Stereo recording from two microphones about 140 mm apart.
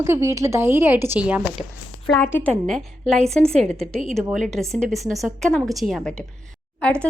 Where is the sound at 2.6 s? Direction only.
5° left (ahead or behind).